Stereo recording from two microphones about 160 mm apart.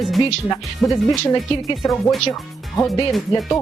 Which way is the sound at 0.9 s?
25° left (ahead or behind).